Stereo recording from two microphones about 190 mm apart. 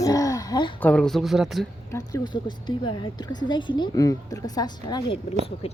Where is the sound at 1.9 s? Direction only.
20° left (ahead or behind).